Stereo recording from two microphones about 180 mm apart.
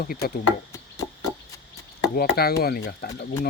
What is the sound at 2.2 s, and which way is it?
Speech, 60° left (ahead or behind).